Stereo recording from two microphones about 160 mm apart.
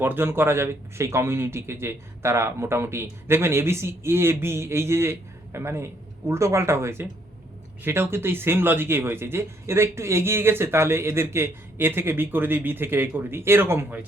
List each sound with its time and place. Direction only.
0.0 s speech: 15° right (ahead or behind)